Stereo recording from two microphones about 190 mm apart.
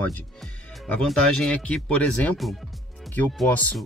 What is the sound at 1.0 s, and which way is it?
Speech, centre (ahead or behind).